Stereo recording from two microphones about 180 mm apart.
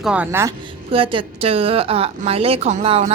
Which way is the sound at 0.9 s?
30° right (ahead or behind).